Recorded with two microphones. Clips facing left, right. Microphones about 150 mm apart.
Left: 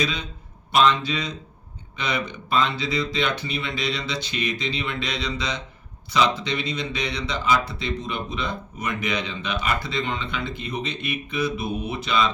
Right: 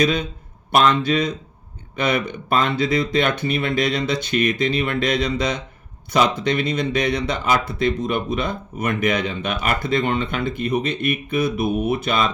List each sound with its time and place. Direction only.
0.0 s speech: 55° right (ahead or behind)